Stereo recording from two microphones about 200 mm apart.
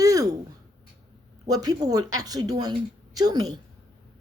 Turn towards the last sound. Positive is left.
turn(degrees=-20)  # may be behind; listen again after turning